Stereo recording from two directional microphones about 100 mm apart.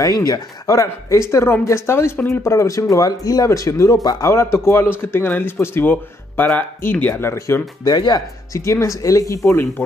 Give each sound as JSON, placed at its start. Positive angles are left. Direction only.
{"t": 0.0, "sound": "speech", "side_deg": 35}
{"t": 2.4, "sound": "speech", "side_deg": 30}
{"t": 4.3, "sound": "speech", "side_deg": 25}
{"t": 8.6, "sound": "speech", "side_deg": 30}
{"t": 9.5, "sound": "speech", "side_deg": 20}